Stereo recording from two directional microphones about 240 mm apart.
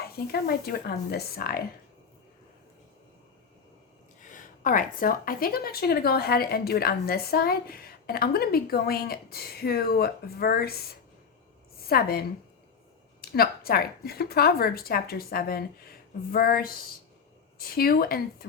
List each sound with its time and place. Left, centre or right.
0.0 s a woman's voice: left
4.3 s a woman's voice: left
11.9 s a woman's voice: left
13.3 s a woman's voice: left